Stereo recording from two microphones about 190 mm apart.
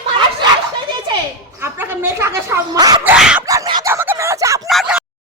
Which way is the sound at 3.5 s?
20° right (ahead or behind).